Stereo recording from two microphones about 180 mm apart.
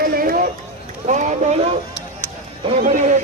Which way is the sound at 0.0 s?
50° right (ahead or behind).